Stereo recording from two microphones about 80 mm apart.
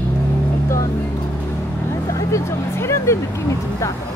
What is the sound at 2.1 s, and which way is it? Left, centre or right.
Speech, left.